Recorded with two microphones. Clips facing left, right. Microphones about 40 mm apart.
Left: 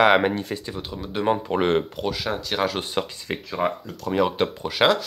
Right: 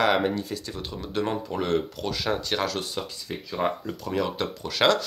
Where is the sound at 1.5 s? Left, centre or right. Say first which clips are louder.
Left 4 dB; left.